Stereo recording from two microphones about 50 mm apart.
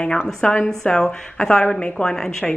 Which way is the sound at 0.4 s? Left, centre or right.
Left.